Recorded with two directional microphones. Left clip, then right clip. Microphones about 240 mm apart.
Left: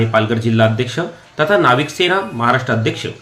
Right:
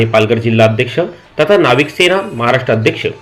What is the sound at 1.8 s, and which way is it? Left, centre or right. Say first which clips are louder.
Speech: right 5 dB; left.